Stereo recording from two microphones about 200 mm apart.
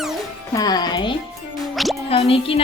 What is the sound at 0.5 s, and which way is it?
Speech, 20° left (ahead or behind).